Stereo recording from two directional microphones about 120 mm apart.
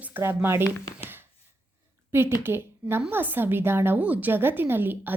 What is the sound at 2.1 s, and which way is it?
A woman's voice, 20° right (ahead or behind).